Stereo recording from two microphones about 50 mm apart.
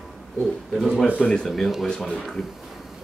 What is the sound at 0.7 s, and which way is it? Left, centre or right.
Speech, centre.